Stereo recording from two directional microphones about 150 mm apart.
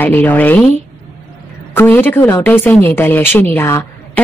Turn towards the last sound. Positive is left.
turn(degrees=15)  # may be behind; listen again after turning